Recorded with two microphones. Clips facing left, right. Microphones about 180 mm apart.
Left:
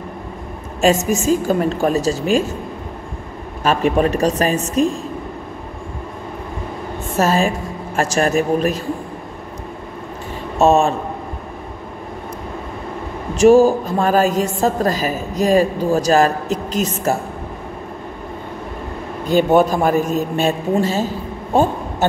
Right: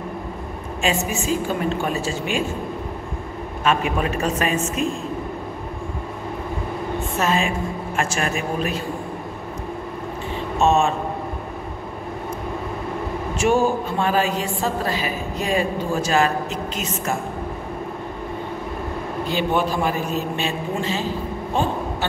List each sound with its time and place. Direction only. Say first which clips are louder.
0.7 s a woman's voice: left 8 dB; 40° left (ahead or behind)
3.6 s a woman's voice: left 6 dB; 40° left (ahead or behind)
7.2 s a woman's voice: left 6 dB; 40° left (ahead or behind)
10.6 s a woman's voice: left 5 dB; 40° left (ahead or behind)
13.4 s a woman's voice: left 9 dB; 35° left (ahead or behind)
19.2 s a man's voice: left 9 dB; 45° left (ahead or behind)